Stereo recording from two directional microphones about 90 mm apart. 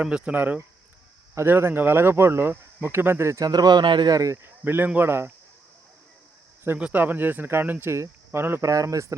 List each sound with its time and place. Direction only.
0.0 s speech: 10° right (ahead or behind); by 4.1 s 55° right (ahead or behind)
4.1 s speech: 40° right (ahead or behind)
4.4 s speech: 25° right (ahead or behind)
6.7 s speech: 15° right (ahead or behind)
8.7 s speech: 40° right (ahead or behind)